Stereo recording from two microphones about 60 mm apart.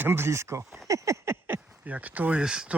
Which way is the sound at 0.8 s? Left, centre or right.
Right.